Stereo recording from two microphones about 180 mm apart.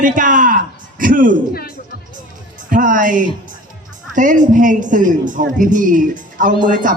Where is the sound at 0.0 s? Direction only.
45° right (ahead or behind).